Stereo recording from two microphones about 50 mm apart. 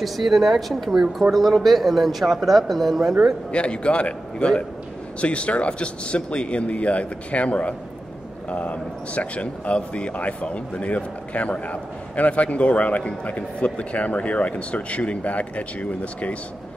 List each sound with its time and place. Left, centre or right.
0.0 s speech: centre
3.5 s speech: left